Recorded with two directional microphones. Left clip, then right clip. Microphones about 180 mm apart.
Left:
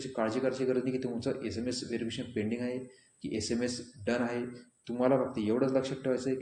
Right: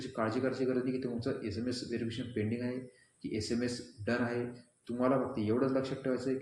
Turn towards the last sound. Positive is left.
turn(degrees=40)  # may be behind; listen again after turning